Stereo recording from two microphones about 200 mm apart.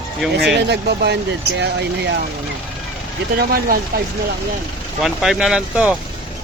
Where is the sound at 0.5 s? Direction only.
55° right (ahead or behind).